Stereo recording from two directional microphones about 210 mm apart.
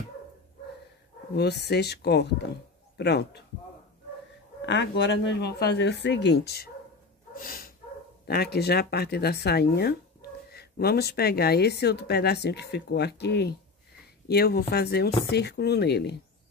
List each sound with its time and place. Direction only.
1.3 s speech: 50° left (ahead or behind)
4.6 s speech: 55° left (ahead or behind)
7.3 s dog: 40° left (ahead or behind)
8.3 s speech: 50° left (ahead or behind)